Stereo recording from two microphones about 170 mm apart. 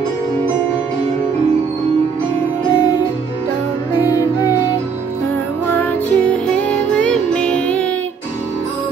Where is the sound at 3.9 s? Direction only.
20° left (ahead or behind).